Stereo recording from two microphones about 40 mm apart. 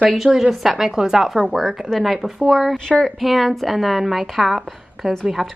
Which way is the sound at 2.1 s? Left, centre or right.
Centre.